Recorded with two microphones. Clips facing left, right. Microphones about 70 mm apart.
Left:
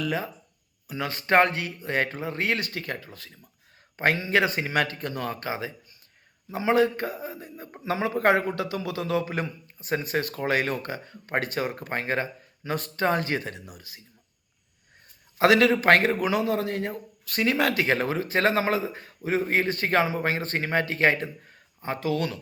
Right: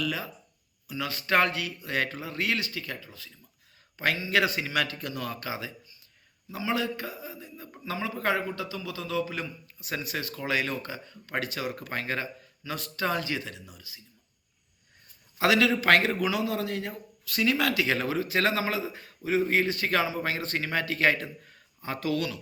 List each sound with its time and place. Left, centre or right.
0.0 s speech: left
2.6 s a man's voice: left
7.9 s a man's voice: left
9.6 s a man's voice: left
15.4 s speech: left